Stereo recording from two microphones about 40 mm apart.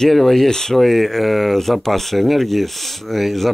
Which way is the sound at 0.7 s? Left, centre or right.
Centre.